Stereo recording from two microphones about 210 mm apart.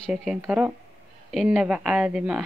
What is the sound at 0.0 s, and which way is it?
Speech, centre (ahead or behind).